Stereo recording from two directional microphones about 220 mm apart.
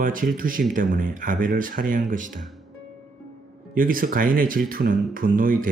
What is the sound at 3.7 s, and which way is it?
Speech, 40° right (ahead or behind).